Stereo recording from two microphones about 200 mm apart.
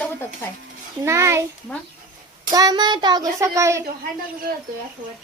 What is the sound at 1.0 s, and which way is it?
Speech, 15° right (ahead or behind).